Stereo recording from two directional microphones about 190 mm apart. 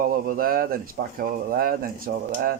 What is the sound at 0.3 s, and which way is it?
Speech, 50° right (ahead or behind).